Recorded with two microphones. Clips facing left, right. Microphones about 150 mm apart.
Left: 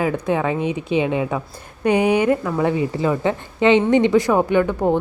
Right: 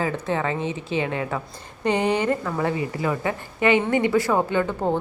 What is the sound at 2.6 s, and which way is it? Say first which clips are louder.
A woman's voice: left 5 dB; 20° left (ahead or behind).